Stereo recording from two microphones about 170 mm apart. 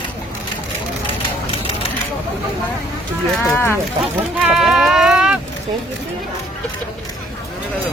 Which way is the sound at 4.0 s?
5° right (ahead or behind).